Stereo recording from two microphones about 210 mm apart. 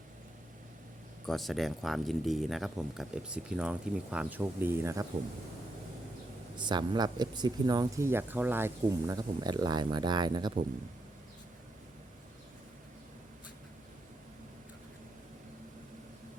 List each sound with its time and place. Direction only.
1.3 s speech: centre (ahead or behind)
6.6 s speech: 20° right (ahead or behind)